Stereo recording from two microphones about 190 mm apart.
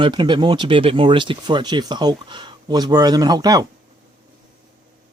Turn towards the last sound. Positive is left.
turn(degrees=-20)  # may be behind; listen again after turning